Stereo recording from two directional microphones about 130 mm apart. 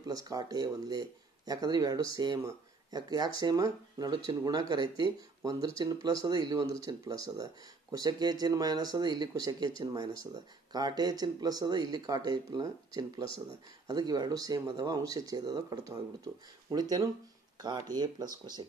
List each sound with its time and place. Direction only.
0.0 s speech: 25° right (ahead or behind)